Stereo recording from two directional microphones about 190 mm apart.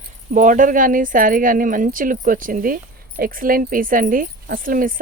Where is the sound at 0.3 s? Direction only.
45° right (ahead or behind).